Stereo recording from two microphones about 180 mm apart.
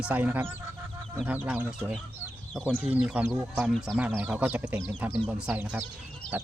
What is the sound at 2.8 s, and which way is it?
Speech, 10° right (ahead or behind).